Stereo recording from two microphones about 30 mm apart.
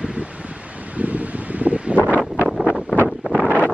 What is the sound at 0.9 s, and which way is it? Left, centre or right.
Wind, right.